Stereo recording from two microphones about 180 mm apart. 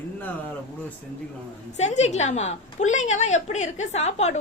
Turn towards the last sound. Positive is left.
turn(degrees=40)  # may be behind; listen again after turning